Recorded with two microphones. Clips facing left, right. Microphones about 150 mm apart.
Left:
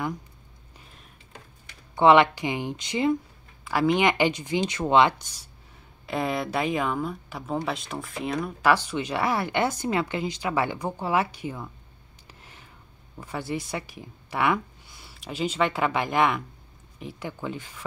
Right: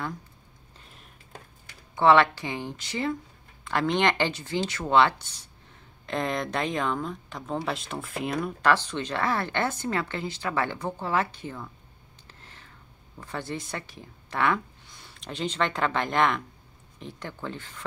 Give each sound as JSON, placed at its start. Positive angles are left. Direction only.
{"t": 2.0, "sound": "speech", "side_deg": 15}
{"t": 3.6, "sound": "speech", "side_deg": 5}
{"t": 8.7, "sound": "speech", "side_deg": 10}
{"t": 12.3, "sound": "a sound", "side_deg": 10}
{"t": 13.2, "sound": "speech", "side_deg": 10}